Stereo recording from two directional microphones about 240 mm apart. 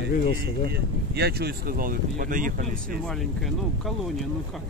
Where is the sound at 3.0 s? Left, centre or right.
Centre.